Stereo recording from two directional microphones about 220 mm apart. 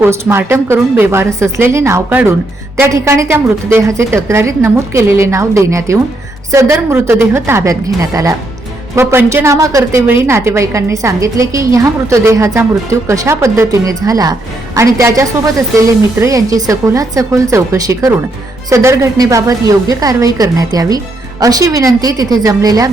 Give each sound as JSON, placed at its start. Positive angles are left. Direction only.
{"t": 0.0, "sound": "a woman's voice", "side_deg": -10}